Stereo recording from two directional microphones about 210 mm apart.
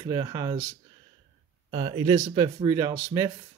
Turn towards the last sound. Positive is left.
turn(degrees=-10)  # may be behind; listen again after turning